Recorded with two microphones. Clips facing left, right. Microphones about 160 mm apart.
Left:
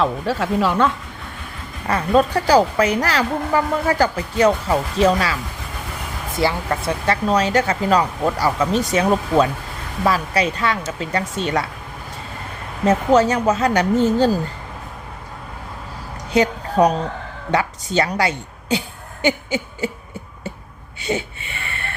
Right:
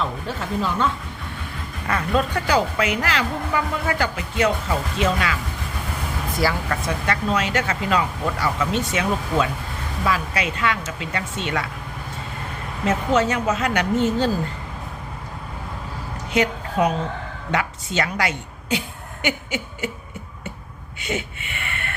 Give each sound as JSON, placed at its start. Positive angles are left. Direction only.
{"t": 0.0, "sound": "speech", "side_deg": 85}
{"t": 1.9, "sound": "speech", "side_deg": 35}
{"t": 6.4, "sound": "speech", "side_deg": 30}
{"t": 12.8, "sound": "speech", "side_deg": 40}
{"t": 16.3, "sound": "a sound", "side_deg": 35}
{"t": 17.5, "sound": "speech", "side_deg": 35}
{"t": 21.0, "sound": "a sound", "side_deg": 30}